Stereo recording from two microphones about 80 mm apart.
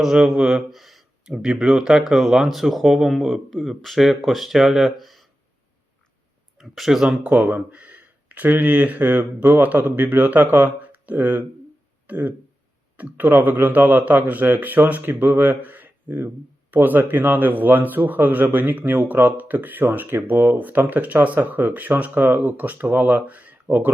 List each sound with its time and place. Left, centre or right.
0.0 s speech: centre
6.6 s speech: centre
7.3 s speech: centre